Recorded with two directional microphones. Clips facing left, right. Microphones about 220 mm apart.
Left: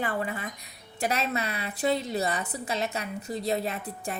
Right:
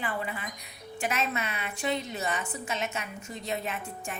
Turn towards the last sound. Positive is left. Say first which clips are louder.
# left 3 dB
turn(degrees=35)  # may be behind; listen again after turning